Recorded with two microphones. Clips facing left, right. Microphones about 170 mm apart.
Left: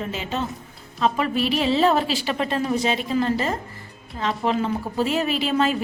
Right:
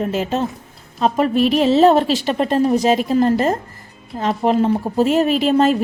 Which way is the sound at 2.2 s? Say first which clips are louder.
Right 7 dB; 40° right (ahead or behind).